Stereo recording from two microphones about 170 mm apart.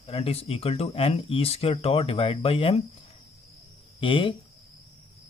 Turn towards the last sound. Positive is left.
turn(degrees=30)  # may be behind; listen again after turning